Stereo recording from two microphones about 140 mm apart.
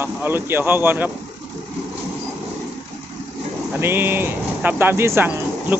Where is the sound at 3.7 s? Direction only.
15° right (ahead or behind).